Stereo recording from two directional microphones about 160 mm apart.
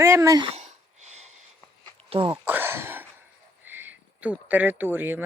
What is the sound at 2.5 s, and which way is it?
Speech, 15° right (ahead or behind).